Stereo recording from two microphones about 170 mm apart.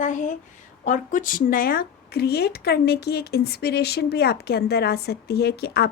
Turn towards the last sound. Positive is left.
turn(degrees=70)  # may be behind; listen again after turning